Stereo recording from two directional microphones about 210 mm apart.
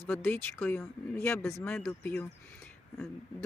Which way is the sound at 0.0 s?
10° left (ahead or behind).